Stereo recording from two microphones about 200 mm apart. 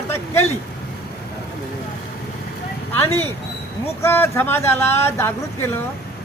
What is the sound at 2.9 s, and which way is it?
A woman's voice, 10° left (ahead or behind).